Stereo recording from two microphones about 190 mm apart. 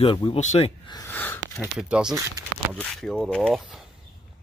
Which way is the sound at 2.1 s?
15° right (ahead or behind).